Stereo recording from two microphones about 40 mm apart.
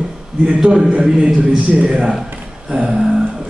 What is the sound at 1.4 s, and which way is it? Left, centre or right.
Speech, right.